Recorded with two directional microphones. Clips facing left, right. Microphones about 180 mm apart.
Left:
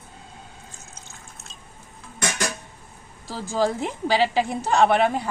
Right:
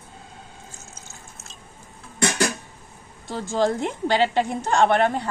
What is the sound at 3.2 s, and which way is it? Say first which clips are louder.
A woman's voice: right 1 dB; 5° left (ahead or behind).